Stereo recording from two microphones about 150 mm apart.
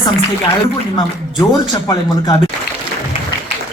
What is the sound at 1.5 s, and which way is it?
Speech, 25° left (ahead or behind).